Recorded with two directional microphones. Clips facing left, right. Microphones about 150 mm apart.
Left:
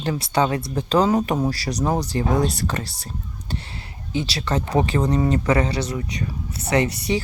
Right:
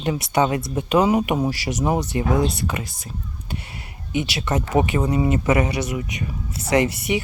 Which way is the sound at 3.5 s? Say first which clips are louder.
Left 2 dB; 30° left (ahead or behind).